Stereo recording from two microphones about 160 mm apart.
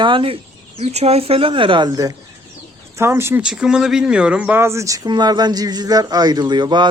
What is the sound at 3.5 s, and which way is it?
Speech, 5° right (ahead or behind).